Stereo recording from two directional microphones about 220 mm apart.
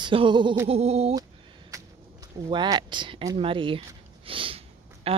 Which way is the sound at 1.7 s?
15° right (ahead or behind).